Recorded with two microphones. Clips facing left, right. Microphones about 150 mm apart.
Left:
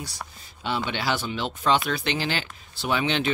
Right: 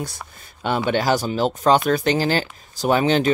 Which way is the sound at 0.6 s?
55° right (ahead or behind).